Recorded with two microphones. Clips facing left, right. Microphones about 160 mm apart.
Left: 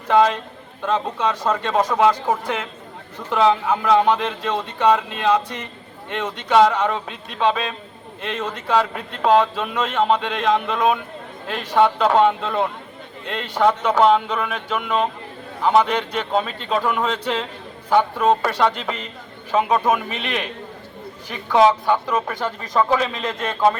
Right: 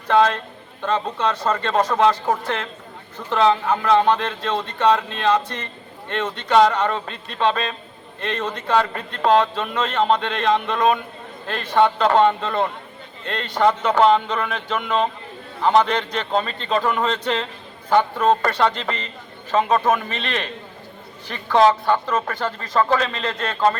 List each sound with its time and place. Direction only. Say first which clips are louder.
0.1 s a man's voice: left 1 dB; 10° left (ahead or behind)